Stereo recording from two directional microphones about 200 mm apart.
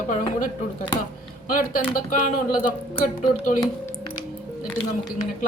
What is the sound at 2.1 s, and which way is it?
Speech, 40° left (ahead or behind).